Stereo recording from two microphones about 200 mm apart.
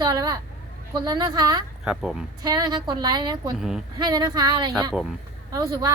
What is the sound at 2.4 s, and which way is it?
A woman's voice, 20° right (ahead or behind).